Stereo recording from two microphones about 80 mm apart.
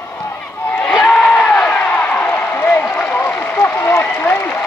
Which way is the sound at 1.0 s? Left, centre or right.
Centre.